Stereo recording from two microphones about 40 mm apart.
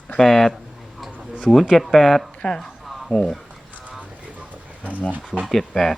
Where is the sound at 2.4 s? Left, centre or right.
Left.